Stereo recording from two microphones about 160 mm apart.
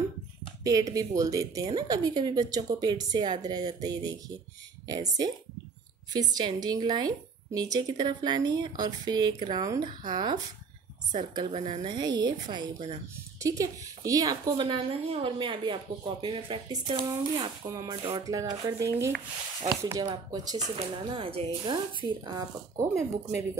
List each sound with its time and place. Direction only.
0.7 s a woman's voice: 25° right (ahead or behind)
11.5 s a woman's voice: 40° right (ahead or behind); by 23.4 s 20° right (ahead or behind)